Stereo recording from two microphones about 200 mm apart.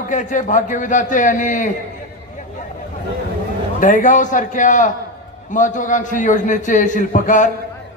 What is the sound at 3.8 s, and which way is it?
Speech, 40° left (ahead or behind).